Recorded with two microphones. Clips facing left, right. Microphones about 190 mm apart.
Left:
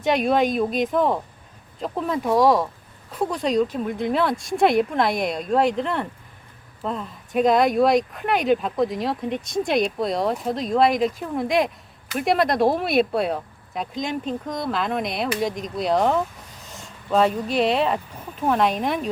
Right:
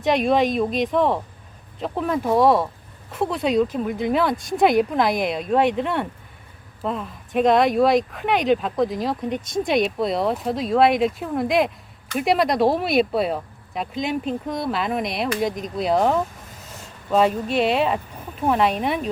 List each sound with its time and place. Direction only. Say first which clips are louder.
0.0 s speech: right 1 dB; centre (ahead or behind)